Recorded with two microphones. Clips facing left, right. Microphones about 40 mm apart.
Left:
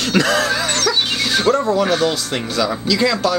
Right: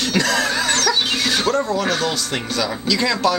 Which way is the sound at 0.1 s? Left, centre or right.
Left.